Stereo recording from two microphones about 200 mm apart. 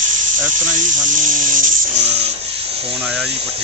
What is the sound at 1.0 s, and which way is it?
Electric toothbrush, 40° right (ahead or behind).